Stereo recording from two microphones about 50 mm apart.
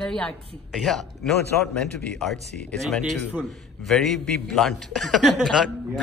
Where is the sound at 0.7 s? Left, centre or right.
Centre.